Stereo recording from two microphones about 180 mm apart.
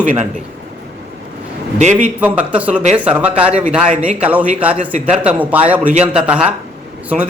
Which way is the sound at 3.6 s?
40° right (ahead or behind).